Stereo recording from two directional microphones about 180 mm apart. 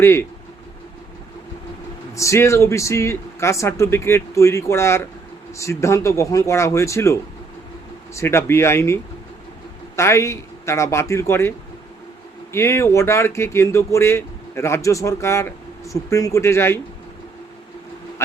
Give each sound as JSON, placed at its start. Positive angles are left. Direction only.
{"t": 0.0, "sound": "speech", "side_deg": 15}
{"t": 2.1, "sound": "speech", "side_deg": 15}